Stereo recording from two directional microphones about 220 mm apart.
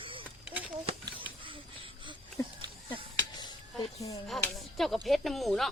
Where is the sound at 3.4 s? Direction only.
15° left (ahead or behind).